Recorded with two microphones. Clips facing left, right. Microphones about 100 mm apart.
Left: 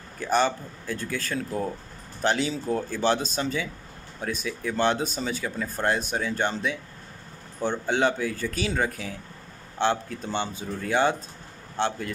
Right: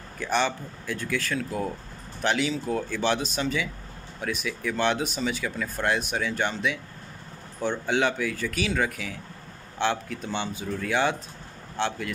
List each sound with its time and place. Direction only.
0.2 s speech: 40° left (ahead or behind)